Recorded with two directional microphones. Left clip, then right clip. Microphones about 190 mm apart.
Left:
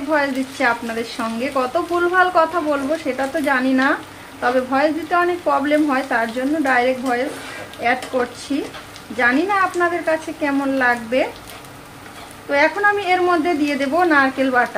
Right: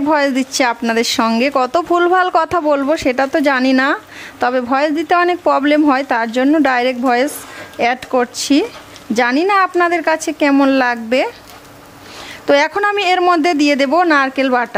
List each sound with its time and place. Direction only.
0.1 s a woman's voice: 65° right (ahead or behind)
12.4 s a woman's voice: 65° right (ahead or behind)